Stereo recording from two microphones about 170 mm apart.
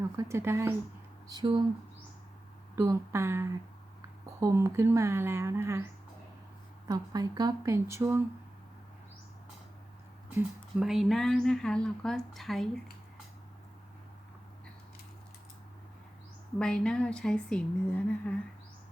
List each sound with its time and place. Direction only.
0.2 s speech: 15° right (ahead or behind)
1.3 s speech: 25° right (ahead or behind)
2.7 s speech: 15° right (ahead or behind)
10.2 s speech: 5° right (ahead or behind)
16.6 s speech: 5° left (ahead or behind)